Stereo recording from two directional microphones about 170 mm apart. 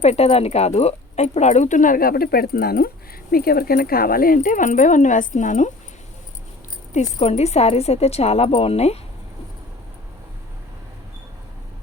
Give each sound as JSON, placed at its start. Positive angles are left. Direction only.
{"t": 0.0, "sound": "speech", "side_deg": 40}
{"t": 6.9, "sound": "a woman's voice", "side_deg": 40}